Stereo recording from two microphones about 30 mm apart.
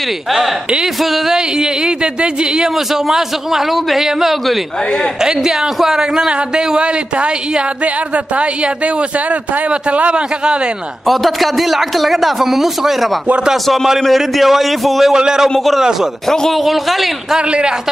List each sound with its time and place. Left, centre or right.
1.3 s speech: right
2.9 s a man's voice: centre; by 10.1 s right
10.1 s a man's voice: right
11.1 s a man's voice: centre
14.1 s a man's voice: centre
15.1 s speech: right
16.5 s a man's voice: centre
17.4 s a man's voice: right